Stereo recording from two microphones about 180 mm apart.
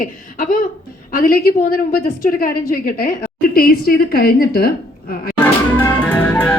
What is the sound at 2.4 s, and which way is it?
A woman's voice, 55° left (ahead or behind).